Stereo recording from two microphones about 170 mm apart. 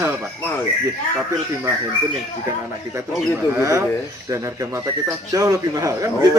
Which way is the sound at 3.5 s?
15° right (ahead or behind).